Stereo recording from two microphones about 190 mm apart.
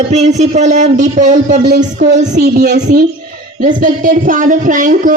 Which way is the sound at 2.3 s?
60° right (ahead or behind).